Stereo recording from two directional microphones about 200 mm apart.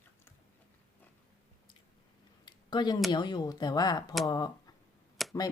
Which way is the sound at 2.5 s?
20° left (ahead or behind).